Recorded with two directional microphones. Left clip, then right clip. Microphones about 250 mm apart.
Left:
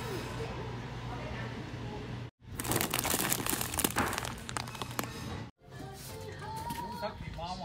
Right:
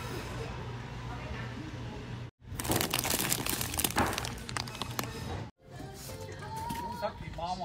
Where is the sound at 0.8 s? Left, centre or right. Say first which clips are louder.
Left 1 dB; left.